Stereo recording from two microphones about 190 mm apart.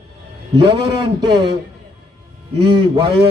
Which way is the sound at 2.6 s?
25° right (ahead or behind).